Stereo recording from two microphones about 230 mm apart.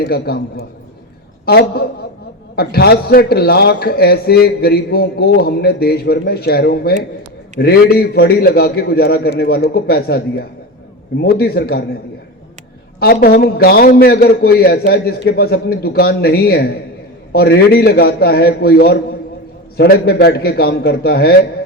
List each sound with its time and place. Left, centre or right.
0.0 s a man's voice: left
13.0 s a man's voice: left